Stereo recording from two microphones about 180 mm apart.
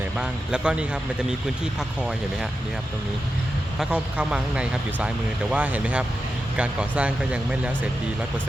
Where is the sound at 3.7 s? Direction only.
5° right (ahead or behind).